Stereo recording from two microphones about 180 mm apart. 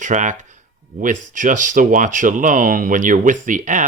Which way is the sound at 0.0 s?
45° right (ahead or behind).